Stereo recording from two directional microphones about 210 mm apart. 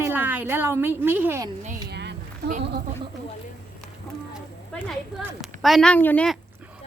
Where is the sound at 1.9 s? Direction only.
55° right (ahead or behind).